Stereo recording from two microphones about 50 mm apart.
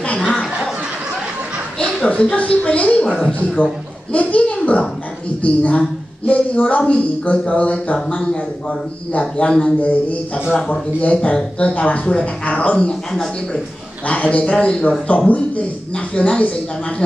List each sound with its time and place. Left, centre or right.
0.2 s snicker: centre
2.0 s speech: left
4.1 s a child's voice: left
8.2 s speech: centre
9.8 s speech: left
14.0 s speech: left